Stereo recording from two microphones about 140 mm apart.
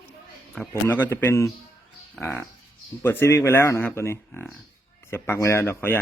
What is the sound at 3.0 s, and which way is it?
Speech, 15° left (ahead or behind).